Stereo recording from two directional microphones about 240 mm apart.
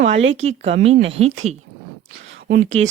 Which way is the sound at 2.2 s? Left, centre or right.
Right.